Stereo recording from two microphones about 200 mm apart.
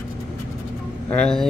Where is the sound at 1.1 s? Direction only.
5° left (ahead or behind).